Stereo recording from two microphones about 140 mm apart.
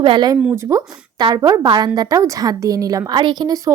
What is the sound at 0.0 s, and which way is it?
Speech, 35° right (ahead or behind).